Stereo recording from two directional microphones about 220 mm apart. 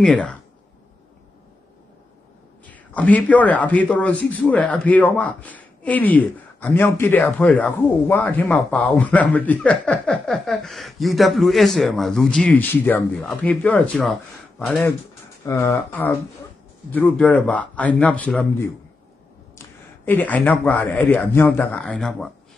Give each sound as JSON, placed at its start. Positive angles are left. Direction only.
{"t": 0.0, "sound": "speech", "side_deg": 5}
{"t": 2.6, "sound": "a man's voice", "side_deg": 5}
{"t": 20.1, "sound": "a man's voice", "side_deg": 10}